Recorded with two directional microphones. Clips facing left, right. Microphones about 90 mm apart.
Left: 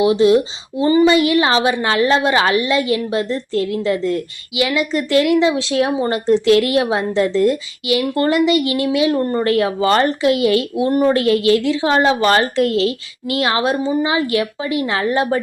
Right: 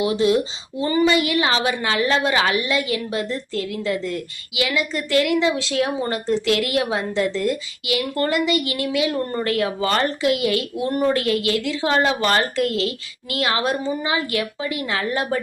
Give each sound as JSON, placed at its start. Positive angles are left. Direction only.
{"t": 0.0, "sound": "a woman's voice", "side_deg": 25}